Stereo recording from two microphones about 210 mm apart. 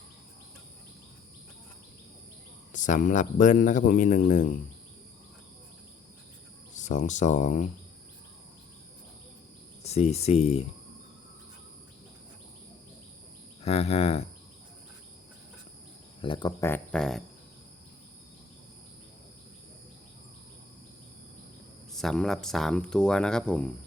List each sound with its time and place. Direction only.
2.7 s speech: 35° left (ahead or behind)
6.7 s speech: 35° left (ahead or behind)
9.8 s speech: 30° left (ahead or behind)
13.6 s cricket: 30° left (ahead or behind)
16.2 s speech: 20° left (ahead or behind); by 17.2 s centre (ahead or behind)
21.9 s speech: centre (ahead or behind)